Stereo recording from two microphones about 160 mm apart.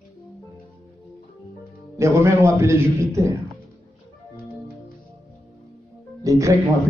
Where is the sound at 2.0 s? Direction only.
15° right (ahead or behind).